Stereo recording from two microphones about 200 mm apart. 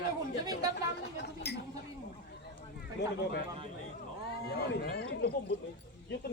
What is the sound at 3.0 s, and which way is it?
Speech, 60° left (ahead or behind).